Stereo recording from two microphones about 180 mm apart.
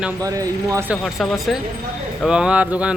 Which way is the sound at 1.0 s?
Centre (ahead or behind).